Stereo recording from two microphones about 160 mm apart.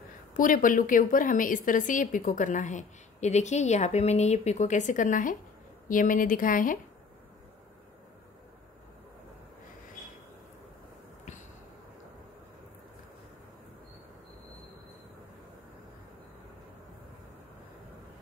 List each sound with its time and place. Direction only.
0.4 s a woman's voice: 60° left (ahead or behind)